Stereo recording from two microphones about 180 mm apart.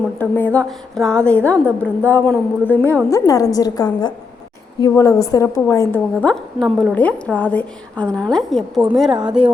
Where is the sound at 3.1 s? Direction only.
20° left (ahead or behind); by 9.5 s 5° right (ahead or behind).